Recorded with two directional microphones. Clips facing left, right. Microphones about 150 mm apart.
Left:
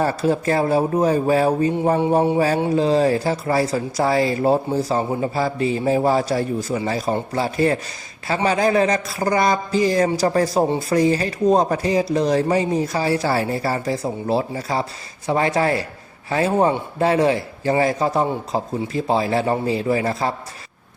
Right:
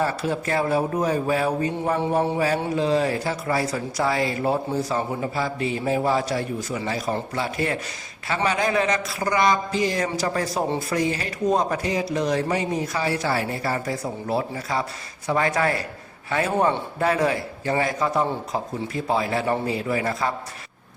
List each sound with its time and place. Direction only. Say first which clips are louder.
0.0 s speech: left 5 dB; 40° left (ahead or behind)